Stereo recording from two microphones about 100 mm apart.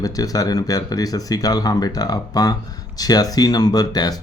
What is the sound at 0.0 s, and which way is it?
Speech, 40° left (ahead or behind).